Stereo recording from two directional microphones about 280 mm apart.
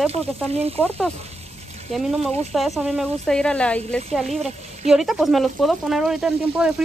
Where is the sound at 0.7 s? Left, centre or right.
Centre.